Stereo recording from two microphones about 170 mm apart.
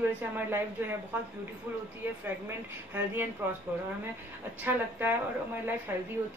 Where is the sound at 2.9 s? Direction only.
10° right (ahead or behind).